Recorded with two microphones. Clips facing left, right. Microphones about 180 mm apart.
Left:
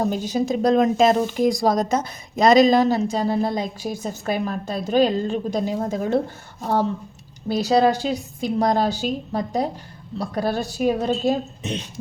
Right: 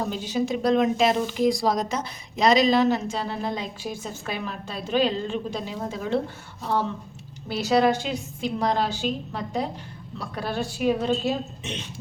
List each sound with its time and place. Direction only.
0.0 s speech: 40° left (ahead or behind)
7.4 s speech: 35° left (ahead or behind)